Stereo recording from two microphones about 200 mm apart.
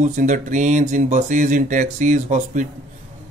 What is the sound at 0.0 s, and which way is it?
Speech, 40° right (ahead or behind).